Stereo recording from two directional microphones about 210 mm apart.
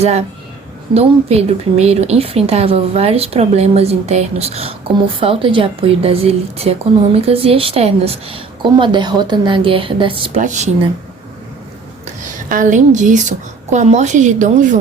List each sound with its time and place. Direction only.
0.0 s speech: 30° right (ahead or behind)
10.4 s speech: 35° right (ahead or behind)
12.0 s a woman's voice: 40° right (ahead or behind)